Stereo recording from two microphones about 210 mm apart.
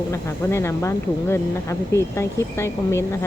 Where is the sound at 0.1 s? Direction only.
10° left (ahead or behind).